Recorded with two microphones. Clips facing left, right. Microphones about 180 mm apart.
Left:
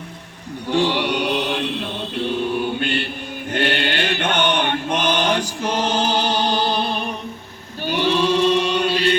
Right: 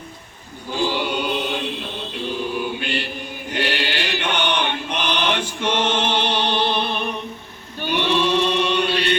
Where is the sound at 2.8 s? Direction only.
55° left (ahead or behind).